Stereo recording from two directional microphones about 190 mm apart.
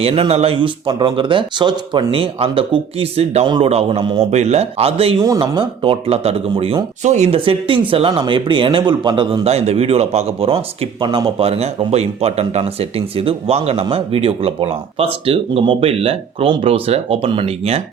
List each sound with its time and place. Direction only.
0.0 s speech: 30° right (ahead or behind)